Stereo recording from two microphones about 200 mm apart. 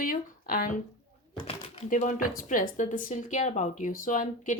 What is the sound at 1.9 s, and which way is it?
Speech, 40° left (ahead or behind).